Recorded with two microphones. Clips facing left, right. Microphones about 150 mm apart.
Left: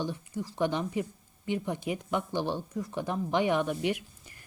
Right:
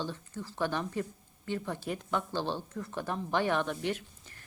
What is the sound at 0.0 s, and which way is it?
A woman's voice, 15° left (ahead or behind).